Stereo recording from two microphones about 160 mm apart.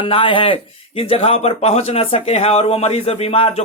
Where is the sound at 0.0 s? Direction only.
35° left (ahead or behind).